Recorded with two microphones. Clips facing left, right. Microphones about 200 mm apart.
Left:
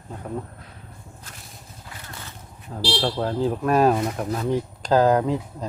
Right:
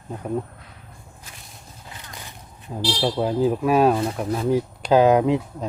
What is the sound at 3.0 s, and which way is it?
Speech, 10° right (ahead or behind).